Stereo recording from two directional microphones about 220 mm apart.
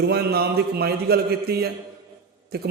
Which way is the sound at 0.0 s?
45° right (ahead or behind).